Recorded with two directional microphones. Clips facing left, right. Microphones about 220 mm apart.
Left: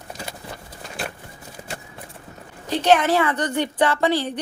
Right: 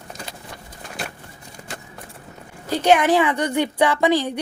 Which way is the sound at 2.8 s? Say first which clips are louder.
Right 2 dB; 10° right (ahead or behind).